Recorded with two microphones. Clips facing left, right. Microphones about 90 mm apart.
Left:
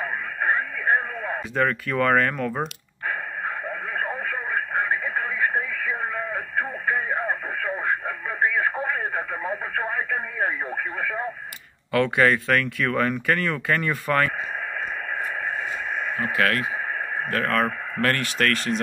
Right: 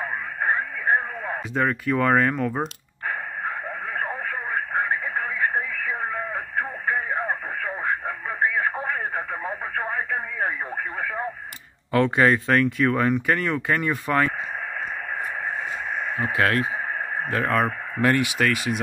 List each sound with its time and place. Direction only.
0.0 s radio: 15° right (ahead or behind)
11.9 s speech: 25° right (ahead or behind)
16.2 s speech: 25° right (ahead or behind); by 18.8 s 10° right (ahead or behind)